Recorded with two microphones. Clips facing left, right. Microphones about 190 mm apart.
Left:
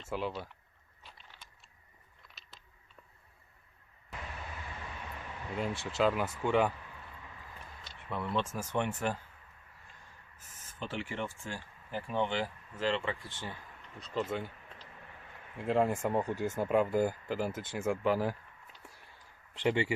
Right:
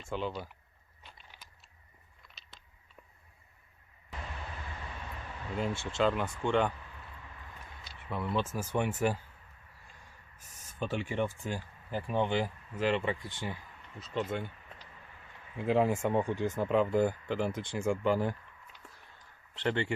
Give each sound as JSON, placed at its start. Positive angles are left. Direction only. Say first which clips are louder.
{"t": 0.1, "sound": "speech", "louder": "even", "side_deg": 5}
{"t": 1.0, "sound": "a sound", "louder": "even", "side_deg": 0}
{"t": 5.5, "sound": "speech", "louder": "right 1 dB", "side_deg": 0}
{"t": 7.9, "sound": "speech", "louder": "right 1 dB", "side_deg": 0}
{"t": 10.8, "sound": "speech", "louder": "right 5 dB", "side_deg": -15}
{"t": 14.0, "sound": "speech", "louder": "even", "side_deg": 0}
{"t": 15.5, "sound": "speech", "louder": "right 2 dB", "side_deg": 0}
{"t": 18.8, "sound": "a sound", "louder": "left 1 dB", "side_deg": 10}
{"t": 19.5, "sound": "speech", "louder": "left 2 dB", "side_deg": 10}